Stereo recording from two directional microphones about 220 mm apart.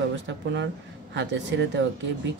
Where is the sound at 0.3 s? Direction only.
55° right (ahead or behind).